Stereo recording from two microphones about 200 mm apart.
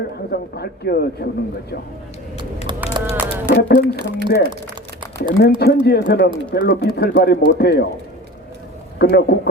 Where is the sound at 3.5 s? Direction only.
55° left (ahead or behind).